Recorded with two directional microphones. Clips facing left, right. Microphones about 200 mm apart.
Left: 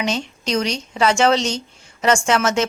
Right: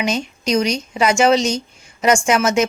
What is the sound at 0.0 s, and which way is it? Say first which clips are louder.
Speech: right 2 dB; 15° right (ahead or behind).